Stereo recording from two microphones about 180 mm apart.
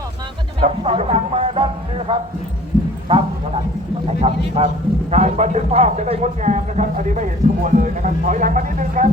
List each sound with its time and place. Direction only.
0.6 s speech: 30° right (ahead or behind)